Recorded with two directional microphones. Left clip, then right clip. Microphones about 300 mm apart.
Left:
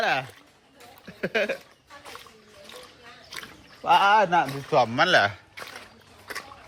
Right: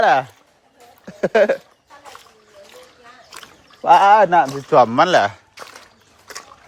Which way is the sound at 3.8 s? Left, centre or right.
Right.